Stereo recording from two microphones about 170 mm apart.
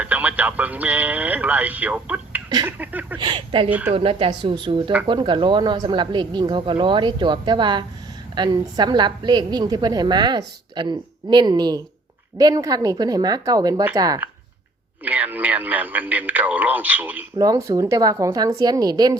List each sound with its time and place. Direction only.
0.0 s speech: 10° right (ahead or behind)
3.2 s a woman's voice: 30° right (ahead or behind)
3.7 s speech: 10° right (ahead or behind)
3.9 s a woman's voice: 35° right (ahead or behind)
15.0 s speech: 10° right (ahead or behind)
17.3 s a woman's voice: 20° right (ahead or behind)